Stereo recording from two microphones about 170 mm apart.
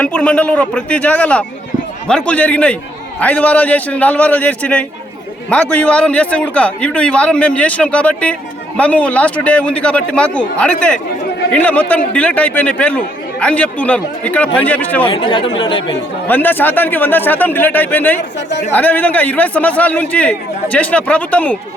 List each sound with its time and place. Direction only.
0.0 s a man's voice: 5° left (ahead or behind)
15.0 s speech: 30° left (ahead or behind)
16.2 s a man's voice: 10° left (ahead or behind)